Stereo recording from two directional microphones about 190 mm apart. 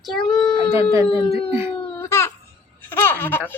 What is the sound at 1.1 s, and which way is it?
Speech, 30° left (ahead or behind).